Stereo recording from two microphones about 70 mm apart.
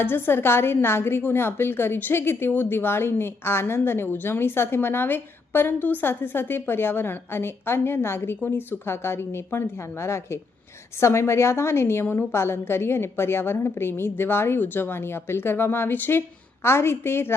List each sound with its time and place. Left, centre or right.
0.0 s a woman's voice: left